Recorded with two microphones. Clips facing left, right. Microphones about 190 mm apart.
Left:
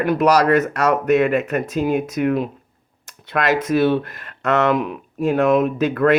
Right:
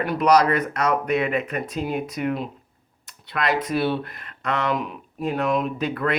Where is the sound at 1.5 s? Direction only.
75° left (ahead or behind); by 3.5 s 60° left (ahead or behind).